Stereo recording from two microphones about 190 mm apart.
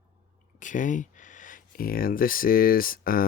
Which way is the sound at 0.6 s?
40° left (ahead or behind).